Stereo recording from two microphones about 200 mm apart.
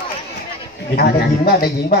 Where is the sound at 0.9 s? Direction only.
50° left (ahead or behind).